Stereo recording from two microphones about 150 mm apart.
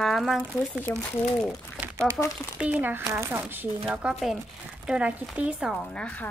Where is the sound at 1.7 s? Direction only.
20° right (ahead or behind).